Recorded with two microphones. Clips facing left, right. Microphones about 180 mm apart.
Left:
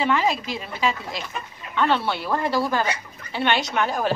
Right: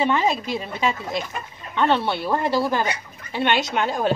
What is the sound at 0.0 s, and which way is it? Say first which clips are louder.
Speech: right 1 dB; 25° right (ahead or behind).